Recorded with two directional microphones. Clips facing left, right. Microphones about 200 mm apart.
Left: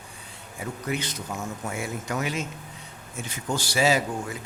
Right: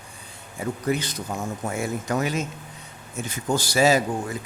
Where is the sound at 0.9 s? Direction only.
35° right (ahead or behind).